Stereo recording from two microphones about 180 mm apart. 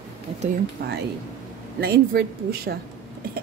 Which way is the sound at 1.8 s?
60° right (ahead or behind).